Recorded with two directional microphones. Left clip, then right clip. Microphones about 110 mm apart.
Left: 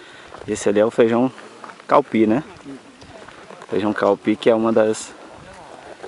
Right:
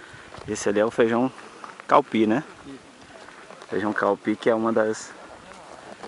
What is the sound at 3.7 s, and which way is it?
Speech, centre (ahead or behind).